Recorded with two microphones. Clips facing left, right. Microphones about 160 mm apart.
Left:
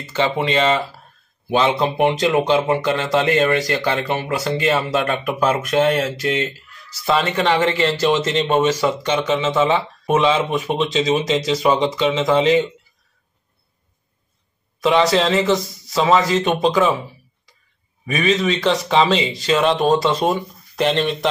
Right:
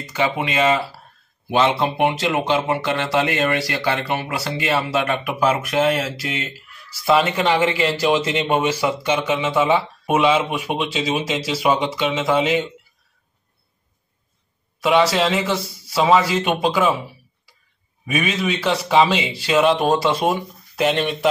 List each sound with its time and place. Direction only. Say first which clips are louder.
0.0 s speech: left 2 dB; 15° right (ahead or behind)
14.8 s speech: left 1 dB; 10° right (ahead or behind)
18.0 s speech: left 3 dB; 10° right (ahead or behind)